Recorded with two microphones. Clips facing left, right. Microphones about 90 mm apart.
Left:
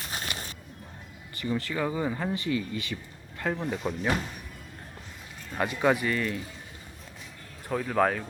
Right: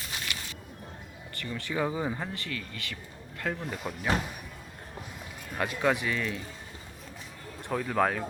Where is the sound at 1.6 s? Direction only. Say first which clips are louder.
Right 4 dB; 10° right (ahead or behind).